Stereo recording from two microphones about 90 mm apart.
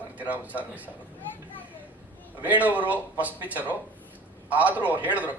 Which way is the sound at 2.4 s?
15° right (ahead or behind).